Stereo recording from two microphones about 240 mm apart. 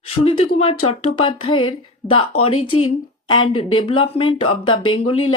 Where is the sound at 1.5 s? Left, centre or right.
Left.